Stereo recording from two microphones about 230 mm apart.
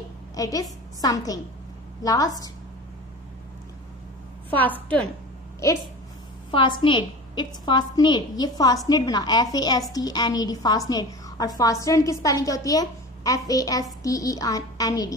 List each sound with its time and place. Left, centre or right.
0.4 s a woman's voice: centre
4.5 s a woman's voice: centre
6.5 s a woman's voice: left